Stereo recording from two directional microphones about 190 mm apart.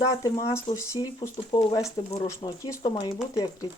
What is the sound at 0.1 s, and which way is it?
Speech, 20° left (ahead or behind).